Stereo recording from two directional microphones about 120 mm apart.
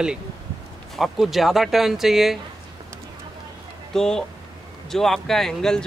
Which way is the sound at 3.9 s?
5° left (ahead or behind).